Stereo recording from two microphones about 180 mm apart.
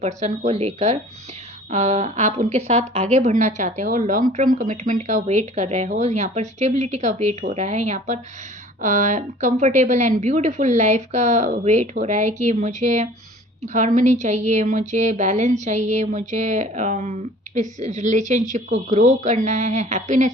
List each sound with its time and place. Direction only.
0.0 s a woman's voice: 40° right (ahead or behind)